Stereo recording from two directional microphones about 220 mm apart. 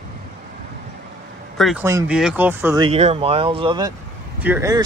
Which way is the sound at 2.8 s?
25° right (ahead or behind).